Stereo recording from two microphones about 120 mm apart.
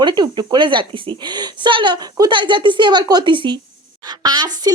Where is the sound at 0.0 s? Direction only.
40° right (ahead or behind).